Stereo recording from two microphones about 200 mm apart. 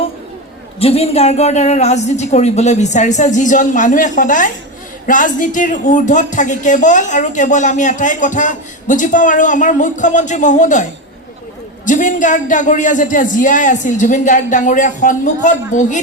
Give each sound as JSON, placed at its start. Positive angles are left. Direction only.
{"t": 0.8, "sound": "speech", "side_deg": 30}
{"t": 11.9, "sound": "speech", "side_deg": 40}